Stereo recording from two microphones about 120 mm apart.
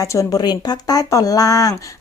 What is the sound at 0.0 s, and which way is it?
Speech, 30° left (ahead or behind).